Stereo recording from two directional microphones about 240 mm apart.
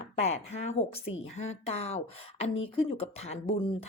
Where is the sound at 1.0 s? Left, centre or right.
Left.